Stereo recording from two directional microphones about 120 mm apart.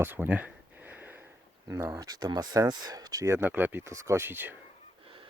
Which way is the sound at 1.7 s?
25° right (ahead or behind).